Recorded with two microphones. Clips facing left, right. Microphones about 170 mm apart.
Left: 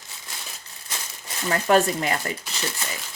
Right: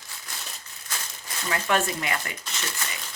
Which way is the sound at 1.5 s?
40° left (ahead or behind).